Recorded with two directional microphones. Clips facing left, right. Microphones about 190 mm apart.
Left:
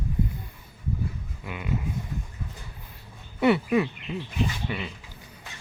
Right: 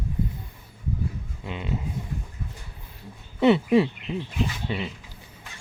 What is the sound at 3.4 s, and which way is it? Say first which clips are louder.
Speech: right 3 dB; 20° right (ahead or behind).